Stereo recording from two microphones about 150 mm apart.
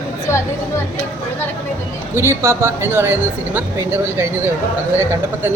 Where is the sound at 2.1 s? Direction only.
15° right (ahead or behind).